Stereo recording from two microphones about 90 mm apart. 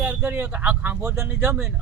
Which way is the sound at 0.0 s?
15° right (ahead or behind).